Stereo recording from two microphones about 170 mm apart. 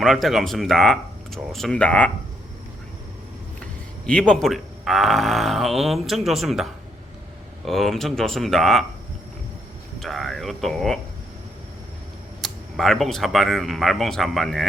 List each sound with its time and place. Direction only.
0.0 s speech: centre (ahead or behind)
4.0 s speech: 5° left (ahead or behind)
7.7 s speech: centre (ahead or behind)
10.0 s speech: centre (ahead or behind)
12.4 s speech: centre (ahead or behind)